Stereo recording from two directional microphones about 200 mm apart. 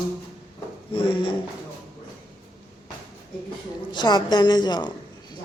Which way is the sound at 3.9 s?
20° left (ahead or behind).